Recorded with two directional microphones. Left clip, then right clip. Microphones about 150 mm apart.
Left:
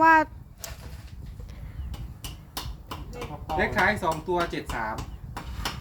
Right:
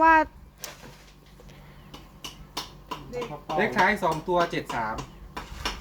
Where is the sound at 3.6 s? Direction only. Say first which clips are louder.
Right 1 dB; 20° right (ahead or behind).